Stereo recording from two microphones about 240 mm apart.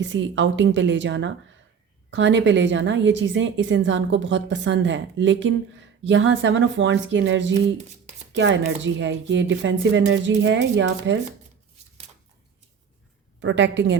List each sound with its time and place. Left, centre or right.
0.0 s a woman's voice: right
13.4 s a woman's voice: right